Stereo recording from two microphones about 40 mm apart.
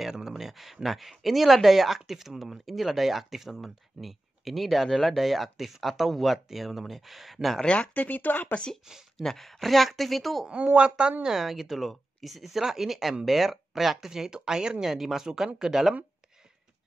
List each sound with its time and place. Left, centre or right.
0.0 s a sound: centre
0.8 s speech: centre
7.6 s speech: left
7.9 s speech: left
9.2 s speech: centre
10.5 s a woman's voice: right
11.2 s speech: centre